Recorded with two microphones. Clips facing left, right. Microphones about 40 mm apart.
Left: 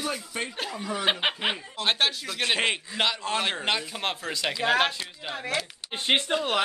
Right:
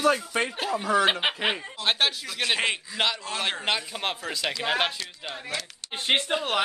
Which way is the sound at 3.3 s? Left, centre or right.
Left.